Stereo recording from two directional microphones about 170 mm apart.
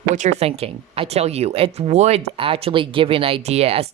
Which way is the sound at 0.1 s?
40° right (ahead or behind).